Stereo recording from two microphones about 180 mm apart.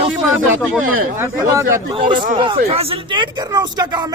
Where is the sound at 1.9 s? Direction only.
30° right (ahead or behind).